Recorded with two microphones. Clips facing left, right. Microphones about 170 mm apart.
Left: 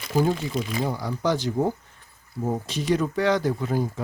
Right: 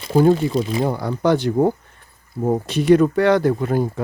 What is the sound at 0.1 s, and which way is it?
Speech, 60° right (ahead or behind).